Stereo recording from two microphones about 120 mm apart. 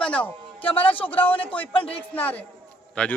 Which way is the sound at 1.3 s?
50° left (ahead or behind).